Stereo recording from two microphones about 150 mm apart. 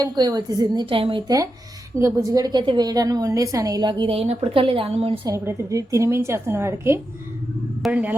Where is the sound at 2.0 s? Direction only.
20° right (ahead or behind); by 5.1 s 40° right (ahead or behind).